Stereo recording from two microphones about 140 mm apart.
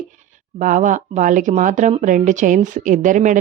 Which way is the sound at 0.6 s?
65° right (ahead or behind).